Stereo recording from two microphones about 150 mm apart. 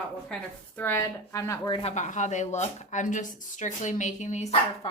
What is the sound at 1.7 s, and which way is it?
Speech, 45° left (ahead or behind).